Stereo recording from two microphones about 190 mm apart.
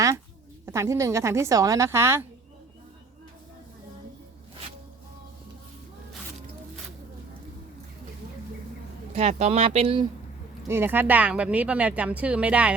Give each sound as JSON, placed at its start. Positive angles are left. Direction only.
{"t": 0.6, "sound": "speech", "side_deg": -15}
{"t": 9.1, "sound": "speech", "side_deg": -35}
{"t": 10.7, "sound": "speech", "side_deg": -10}